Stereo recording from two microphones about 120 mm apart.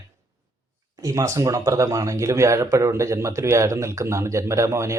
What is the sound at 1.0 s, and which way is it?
Speech, 25° right (ahead or behind).